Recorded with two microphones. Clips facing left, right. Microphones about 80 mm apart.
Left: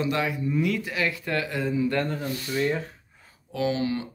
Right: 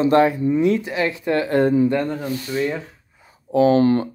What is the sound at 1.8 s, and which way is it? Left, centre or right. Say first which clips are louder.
Speech: right 6 dB; centre.